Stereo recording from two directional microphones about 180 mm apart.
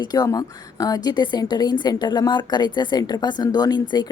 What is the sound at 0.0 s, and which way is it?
Speech, 20° left (ahead or behind).